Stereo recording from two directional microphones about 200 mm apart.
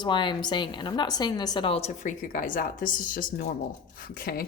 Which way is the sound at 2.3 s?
45° left (ahead or behind).